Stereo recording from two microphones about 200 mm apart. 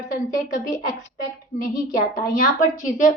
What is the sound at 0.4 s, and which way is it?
Speech, 40° left (ahead or behind).